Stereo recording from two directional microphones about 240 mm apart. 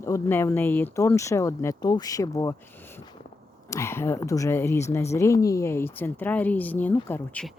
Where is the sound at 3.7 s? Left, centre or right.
Centre.